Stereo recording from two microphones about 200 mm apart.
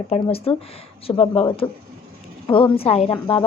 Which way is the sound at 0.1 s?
30° left (ahead or behind).